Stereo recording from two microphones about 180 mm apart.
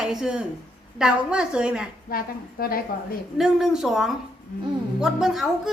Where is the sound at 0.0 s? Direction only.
5° right (ahead or behind).